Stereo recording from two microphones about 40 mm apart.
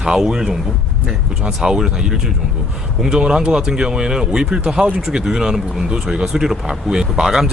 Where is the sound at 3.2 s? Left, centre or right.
Right.